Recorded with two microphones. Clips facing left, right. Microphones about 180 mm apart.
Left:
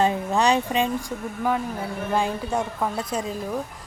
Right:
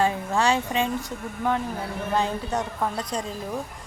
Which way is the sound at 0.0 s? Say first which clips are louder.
Left 2 dB; 20° left (ahead or behind).